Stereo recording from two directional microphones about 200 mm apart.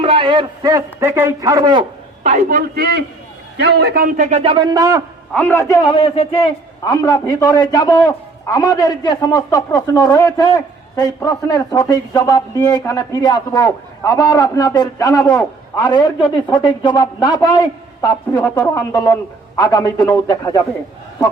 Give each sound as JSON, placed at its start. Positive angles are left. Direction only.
{"t": 0.0, "sound": "a man's voice", "side_deg": -25}
{"t": 2.2, "sound": "a man's voice", "side_deg": -35}
{"t": 4.3, "sound": "a man's voice", "side_deg": -30}
{"t": 5.3, "sound": "a man's voice", "side_deg": 10}